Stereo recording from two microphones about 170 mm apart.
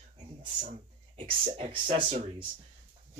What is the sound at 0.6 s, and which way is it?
Speech, 40° right (ahead or behind).